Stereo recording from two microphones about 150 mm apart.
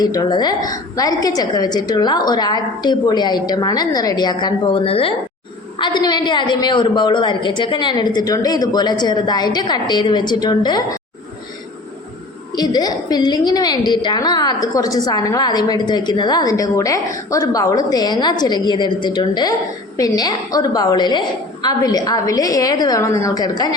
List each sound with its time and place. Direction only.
0.0 s a woman's voice: 25° left (ahead or behind)
12.5 s a woman's voice: 25° left (ahead or behind)